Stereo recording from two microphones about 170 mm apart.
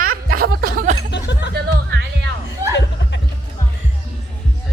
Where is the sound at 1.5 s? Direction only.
80° right.